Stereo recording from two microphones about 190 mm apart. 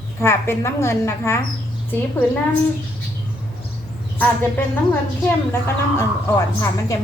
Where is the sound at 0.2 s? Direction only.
15° left (ahead or behind).